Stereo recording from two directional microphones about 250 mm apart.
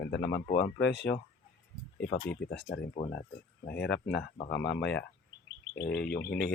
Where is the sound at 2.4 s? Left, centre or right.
Left.